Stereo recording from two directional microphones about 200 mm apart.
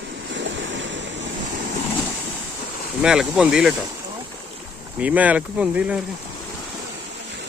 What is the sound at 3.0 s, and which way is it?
Speech, 5° right (ahead or behind).